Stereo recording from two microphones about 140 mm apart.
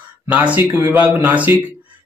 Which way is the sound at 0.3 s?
10° right (ahead or behind).